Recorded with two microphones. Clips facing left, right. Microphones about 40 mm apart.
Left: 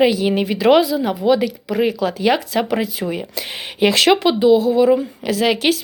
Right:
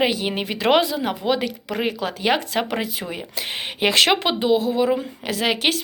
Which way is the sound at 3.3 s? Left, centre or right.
Right.